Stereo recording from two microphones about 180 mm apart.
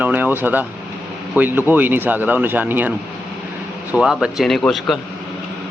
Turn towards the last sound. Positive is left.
turn(degrees=0)  # may be behind; listen again after turning